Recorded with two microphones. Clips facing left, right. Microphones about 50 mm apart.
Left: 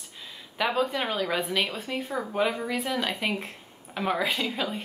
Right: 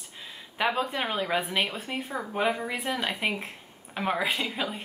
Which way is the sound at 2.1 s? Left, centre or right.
Centre.